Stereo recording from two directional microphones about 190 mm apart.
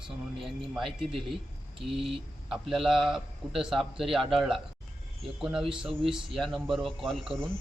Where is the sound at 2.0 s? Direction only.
30° right (ahead or behind).